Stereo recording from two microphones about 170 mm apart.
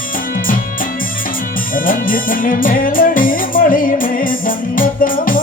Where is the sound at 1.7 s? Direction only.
55° left (ahead or behind).